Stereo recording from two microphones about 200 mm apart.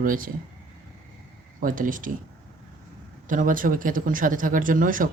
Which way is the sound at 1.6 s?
45° right (ahead or behind).